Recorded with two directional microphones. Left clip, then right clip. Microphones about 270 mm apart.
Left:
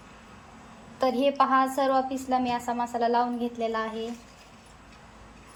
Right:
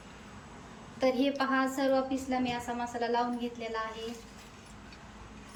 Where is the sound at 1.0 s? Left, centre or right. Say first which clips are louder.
Left 6 dB; centre.